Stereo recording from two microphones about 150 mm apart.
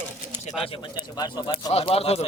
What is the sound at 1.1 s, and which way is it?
Speech, 25° left (ahead or behind).